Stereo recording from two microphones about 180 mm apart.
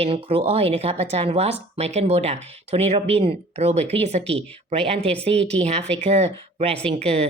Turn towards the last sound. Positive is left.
turn(degrees=-35)  # may be behind; listen again after turning